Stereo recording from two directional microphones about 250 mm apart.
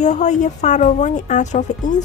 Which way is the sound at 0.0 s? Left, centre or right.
Left.